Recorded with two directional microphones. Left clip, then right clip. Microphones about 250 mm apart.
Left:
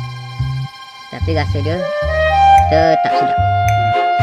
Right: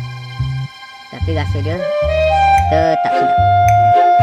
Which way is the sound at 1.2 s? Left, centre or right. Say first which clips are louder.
Left 3 dB; centre.